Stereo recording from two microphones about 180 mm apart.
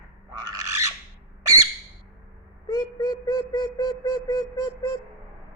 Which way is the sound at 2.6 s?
25° left (ahead or behind).